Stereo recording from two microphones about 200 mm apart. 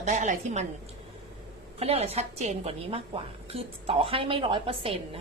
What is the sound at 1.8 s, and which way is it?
A woman's voice, 30° right (ahead or behind).